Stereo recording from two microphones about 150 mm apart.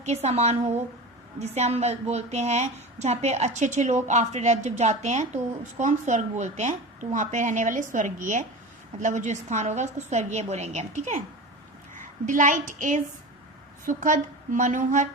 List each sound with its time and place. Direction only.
0.0 s a woman's voice: 45° right (ahead or behind)